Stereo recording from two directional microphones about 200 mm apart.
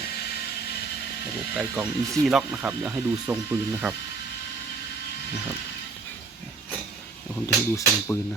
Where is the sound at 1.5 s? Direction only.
5° right (ahead or behind).